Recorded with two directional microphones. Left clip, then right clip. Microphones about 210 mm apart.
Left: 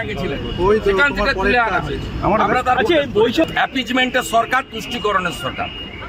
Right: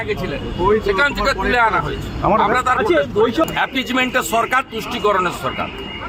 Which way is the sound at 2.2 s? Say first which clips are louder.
Right 1 dB; 5° right (ahead or behind).